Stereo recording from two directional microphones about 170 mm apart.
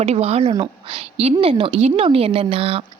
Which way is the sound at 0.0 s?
40° right (ahead or behind).